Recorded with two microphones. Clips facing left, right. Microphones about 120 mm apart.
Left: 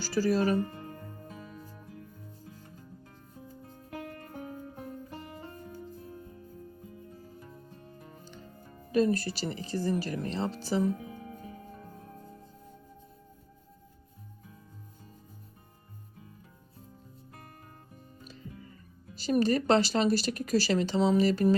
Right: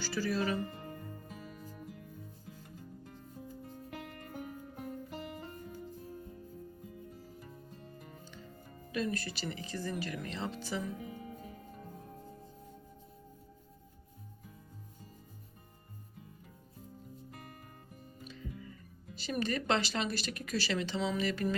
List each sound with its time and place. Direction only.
0.0 s speech: 40° left (ahead or behind)
7.9 s music: 30° left (ahead or behind)
8.9 s speech: 40° left (ahead or behind)
18.3 s music: 35° left (ahead or behind)
19.1 s speech: 40° left (ahead or behind)